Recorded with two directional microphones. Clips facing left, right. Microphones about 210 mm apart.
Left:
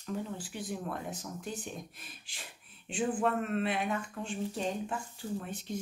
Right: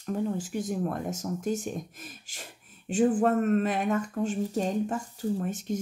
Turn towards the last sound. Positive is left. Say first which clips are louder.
# right 8 dB
turn(degrees=-45)  # may be behind; listen again after turning